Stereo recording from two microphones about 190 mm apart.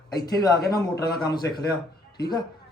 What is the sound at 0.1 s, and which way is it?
A man's voice, 20° left (ahead or behind).